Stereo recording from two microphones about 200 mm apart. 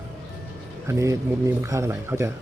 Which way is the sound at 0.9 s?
15° right (ahead or behind).